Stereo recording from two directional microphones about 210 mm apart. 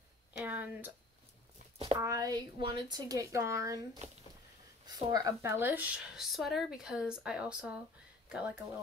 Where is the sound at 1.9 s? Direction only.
15° right (ahead or behind).